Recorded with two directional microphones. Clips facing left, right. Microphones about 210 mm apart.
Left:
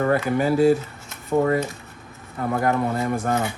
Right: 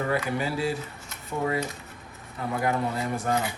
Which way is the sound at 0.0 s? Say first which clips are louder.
Left 7 dB; 50° left (ahead or behind).